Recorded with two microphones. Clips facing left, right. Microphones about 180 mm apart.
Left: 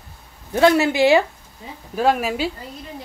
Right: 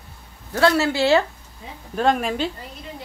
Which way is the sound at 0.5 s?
15° left (ahead or behind).